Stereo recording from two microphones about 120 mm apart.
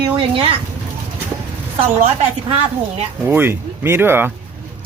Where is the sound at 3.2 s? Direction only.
15° right (ahead or behind).